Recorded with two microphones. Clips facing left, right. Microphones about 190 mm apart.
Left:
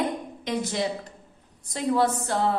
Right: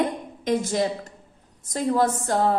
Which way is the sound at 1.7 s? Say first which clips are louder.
Right 1 dB; 45° right (ahead or behind).